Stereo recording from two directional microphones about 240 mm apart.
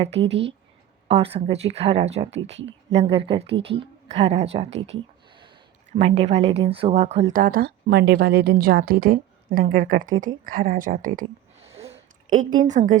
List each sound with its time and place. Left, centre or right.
0.2 s speech: right
1.0 s speech: right
6.0 s speech: right
7.3 s a woman's voice: right
11.2 s a sound: right
12.6 s a woman's voice: right